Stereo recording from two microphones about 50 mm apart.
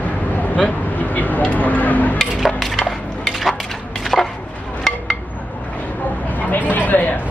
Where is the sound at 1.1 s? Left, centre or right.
Left.